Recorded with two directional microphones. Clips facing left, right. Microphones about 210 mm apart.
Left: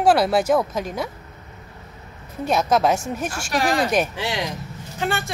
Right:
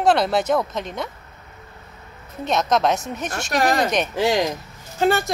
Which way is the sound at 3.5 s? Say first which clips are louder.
Even; 45° right (ahead or behind).